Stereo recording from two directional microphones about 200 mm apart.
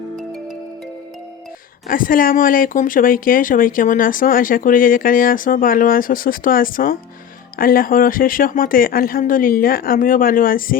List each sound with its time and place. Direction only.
1.9 s speech: 45° left (ahead or behind)